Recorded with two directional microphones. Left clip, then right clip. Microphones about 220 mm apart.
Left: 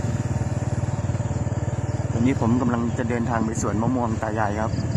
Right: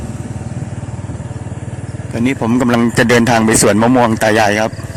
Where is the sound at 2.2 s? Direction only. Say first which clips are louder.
Right 8 dB; 30° right (ahead or behind).